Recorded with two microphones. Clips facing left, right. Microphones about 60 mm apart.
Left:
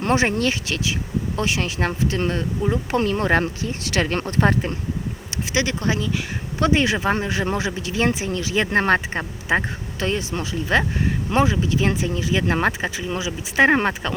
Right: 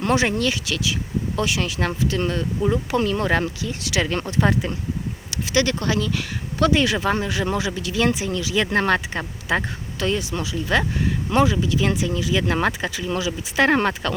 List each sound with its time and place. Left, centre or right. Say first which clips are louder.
0.0 s speech: left 1 dB; left
5.3 s speech: right 2 dB; left